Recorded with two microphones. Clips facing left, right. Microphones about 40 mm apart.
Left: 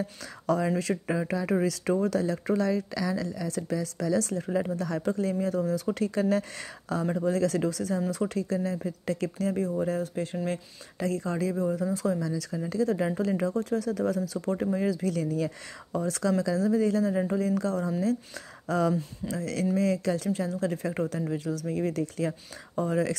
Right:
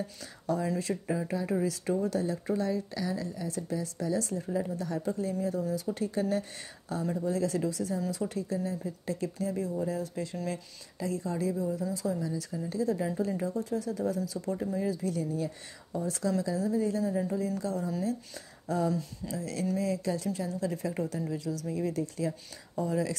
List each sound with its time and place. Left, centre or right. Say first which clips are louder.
0.7 s speech: left 3 dB; left
9.6 s speech: left 4 dB; left
10.3 s speech: left 4 dB; left
11.0 s speech: left 3 dB; left
11.5 s speech: left 4 dB; left
12.2 s speech: left 3 dB; left
17.2 s speech: left 5 dB; left
18.7 s speech: left 4 dB; left
19.2 s speech: left 5 dB; left
20.3 s speech: left 4 dB; left